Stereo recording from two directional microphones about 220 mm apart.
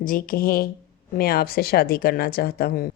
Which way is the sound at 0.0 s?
40° left (ahead or behind).